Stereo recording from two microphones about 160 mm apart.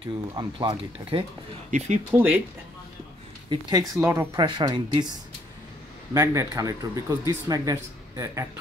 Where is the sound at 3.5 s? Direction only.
25° right (ahead or behind).